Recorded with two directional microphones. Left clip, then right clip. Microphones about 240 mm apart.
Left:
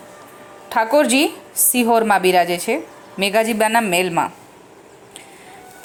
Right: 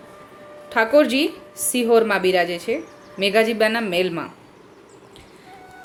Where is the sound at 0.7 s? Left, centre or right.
Left.